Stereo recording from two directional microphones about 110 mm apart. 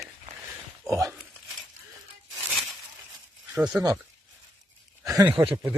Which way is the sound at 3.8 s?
25° right (ahead or behind).